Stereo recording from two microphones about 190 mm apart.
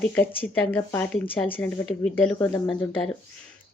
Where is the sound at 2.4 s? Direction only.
20° left (ahead or behind).